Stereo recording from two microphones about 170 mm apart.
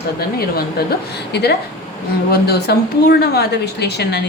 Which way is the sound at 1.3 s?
70° left (ahead or behind).